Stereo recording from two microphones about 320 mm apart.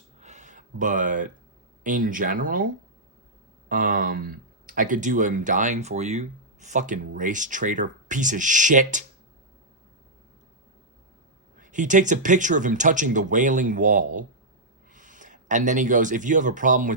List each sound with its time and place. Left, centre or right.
0.2 s a sound: right
1.8 s speech: right
3.7 s speech: right
11.5 s speech: right